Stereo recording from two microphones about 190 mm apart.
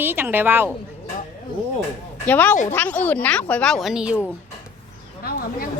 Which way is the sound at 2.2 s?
10° left (ahead or behind).